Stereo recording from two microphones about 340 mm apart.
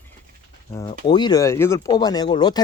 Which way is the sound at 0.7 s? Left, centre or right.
Centre.